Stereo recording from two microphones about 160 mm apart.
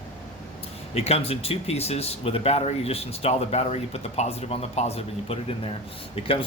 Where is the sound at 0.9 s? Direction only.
40° left (ahead or behind).